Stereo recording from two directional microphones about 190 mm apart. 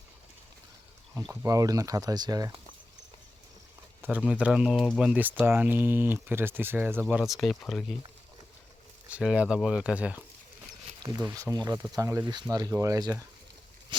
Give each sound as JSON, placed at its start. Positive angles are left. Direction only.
{"t": 1.1, "sound": "speech", "side_deg": -15}
{"t": 4.0, "sound": "speech", "side_deg": -5}
{"t": 9.0, "sound": "speech", "side_deg": -5}
{"t": 11.0, "sound": "speech", "side_deg": -20}